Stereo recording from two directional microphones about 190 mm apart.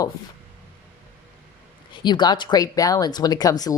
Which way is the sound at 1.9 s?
25° left (ahead or behind).